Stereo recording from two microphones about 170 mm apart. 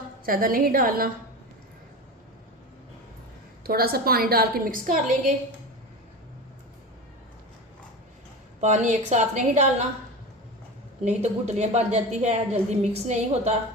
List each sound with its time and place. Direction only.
0.3 s a woman's voice: 60° right (ahead or behind)
3.6 s a woman's voice: 60° right (ahead or behind)
8.6 s a woman's voice: 45° right (ahead or behind)
11.0 s a woman's voice: 40° right (ahead or behind)